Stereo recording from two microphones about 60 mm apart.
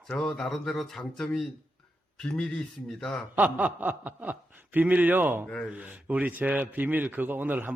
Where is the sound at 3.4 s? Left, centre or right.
Right.